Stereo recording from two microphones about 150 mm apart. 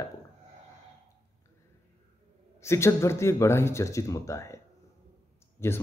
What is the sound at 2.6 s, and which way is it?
A man's voice, 20° left (ahead or behind).